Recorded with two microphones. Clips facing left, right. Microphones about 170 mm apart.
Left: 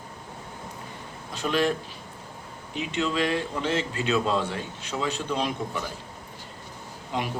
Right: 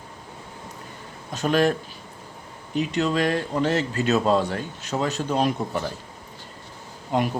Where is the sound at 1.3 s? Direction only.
45° right (ahead or behind).